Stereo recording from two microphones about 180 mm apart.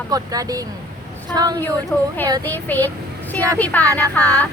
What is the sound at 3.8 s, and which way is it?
Speech, 20° right (ahead or behind).